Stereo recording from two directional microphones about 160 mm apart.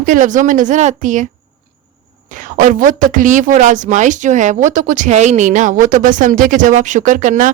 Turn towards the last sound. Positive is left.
turn(degrees=-55)  # may be behind; listen again after turning